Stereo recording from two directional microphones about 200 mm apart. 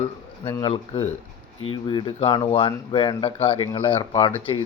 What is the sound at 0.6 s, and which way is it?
Speech, 30° left (ahead or behind).